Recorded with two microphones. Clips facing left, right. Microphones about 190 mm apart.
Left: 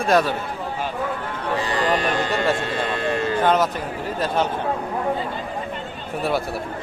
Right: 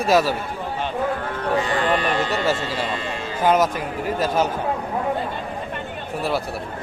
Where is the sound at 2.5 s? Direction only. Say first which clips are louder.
Left 1 dB; 55° left (ahead or behind).